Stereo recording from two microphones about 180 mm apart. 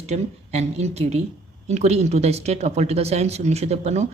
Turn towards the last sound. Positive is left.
turn(degrees=-35)  # may be behind; listen again after turning